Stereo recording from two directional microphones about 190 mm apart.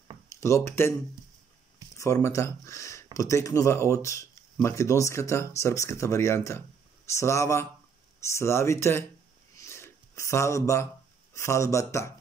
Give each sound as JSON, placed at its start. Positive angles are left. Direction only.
{"t": 0.4, "sound": "speech", "side_deg": 15}
{"t": 2.0, "sound": "speech", "side_deg": 15}
{"t": 9.6, "sound": "a sound", "side_deg": 15}
{"t": 11.3, "sound": "speech", "side_deg": 15}